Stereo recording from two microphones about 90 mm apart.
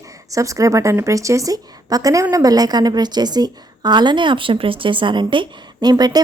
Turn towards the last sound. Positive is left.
turn(degrees=-50)  # may be behind; listen again after turning